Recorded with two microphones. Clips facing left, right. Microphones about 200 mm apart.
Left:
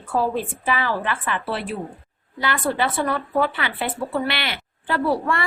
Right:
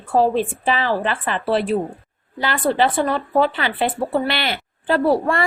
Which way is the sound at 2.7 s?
30° right (ahead or behind).